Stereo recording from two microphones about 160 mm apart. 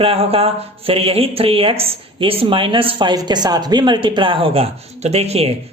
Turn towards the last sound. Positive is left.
turn(degrees=-40)  # may be behind; listen again after turning